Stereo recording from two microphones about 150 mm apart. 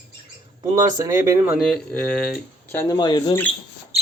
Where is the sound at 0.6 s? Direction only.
20° right (ahead or behind).